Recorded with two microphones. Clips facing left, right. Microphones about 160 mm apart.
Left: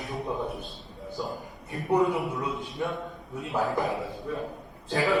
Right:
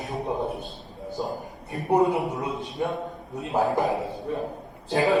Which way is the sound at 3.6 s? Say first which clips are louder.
Right 4 dB; 35° right (ahead or behind).